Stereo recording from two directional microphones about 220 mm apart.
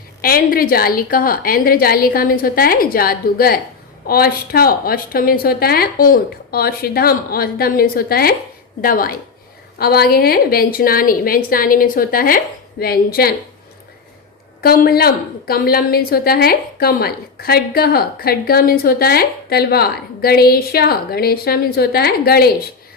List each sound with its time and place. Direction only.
0.2 s a woman's voice: 40° left (ahead or behind)
14.6 s a woman's voice: 45° left (ahead or behind)